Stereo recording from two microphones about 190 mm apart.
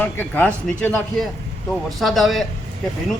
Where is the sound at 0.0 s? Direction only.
10° left (ahead or behind).